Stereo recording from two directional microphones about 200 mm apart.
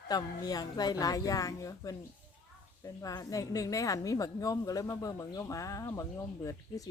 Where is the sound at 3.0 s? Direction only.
15° left (ahead or behind).